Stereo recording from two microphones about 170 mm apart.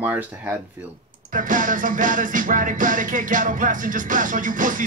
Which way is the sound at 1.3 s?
50° right (ahead or behind).